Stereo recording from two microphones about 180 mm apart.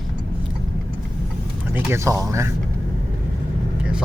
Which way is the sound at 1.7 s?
15° right (ahead or behind).